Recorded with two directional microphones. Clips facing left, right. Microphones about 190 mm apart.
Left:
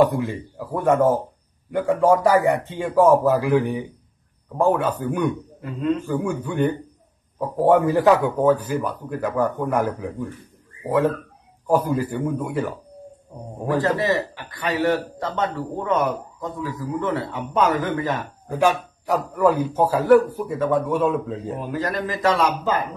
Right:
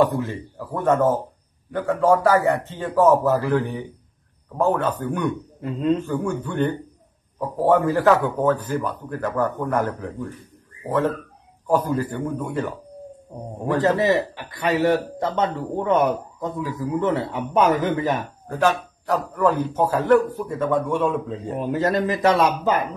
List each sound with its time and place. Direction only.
0.0 s a man's voice: 15° left (ahead or behind)
5.6 s speech: 25° right (ahead or behind)
6.0 s a man's voice: 10° left (ahead or behind)
13.9 s speech: 20° right (ahead or behind)
18.5 s a man's voice: 10° left (ahead or behind)
21.5 s speech: 25° right (ahead or behind)